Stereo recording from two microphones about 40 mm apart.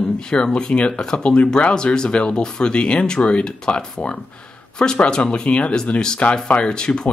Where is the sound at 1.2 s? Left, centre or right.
Left.